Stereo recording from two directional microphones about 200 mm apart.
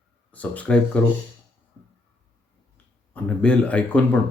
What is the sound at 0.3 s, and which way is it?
Speech, 5° left (ahead or behind).